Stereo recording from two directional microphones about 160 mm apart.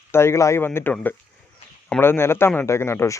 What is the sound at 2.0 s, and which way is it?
Speech, 15° left (ahead or behind).